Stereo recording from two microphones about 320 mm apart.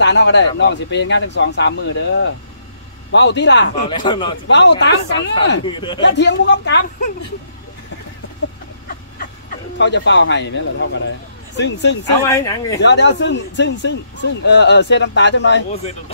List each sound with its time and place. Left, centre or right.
0.0 s speech: left
3.9 s a man's voice: centre
4.5 s speech: left
5.7 s a man's voice: centre
6.0 s speech: left
9.8 s speech: left
12.3 s a man's voice: centre
12.8 s speech: left